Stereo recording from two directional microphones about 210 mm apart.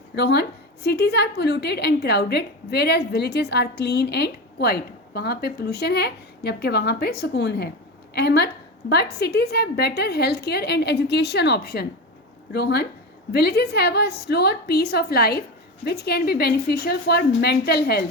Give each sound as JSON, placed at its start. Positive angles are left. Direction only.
{"t": 0.2, "sound": "a woman's voice", "side_deg": 50}